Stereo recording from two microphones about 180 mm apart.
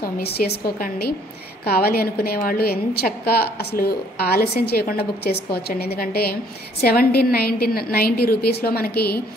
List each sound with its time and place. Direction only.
0.0 s a woman's voice: 60° left (ahead or behind)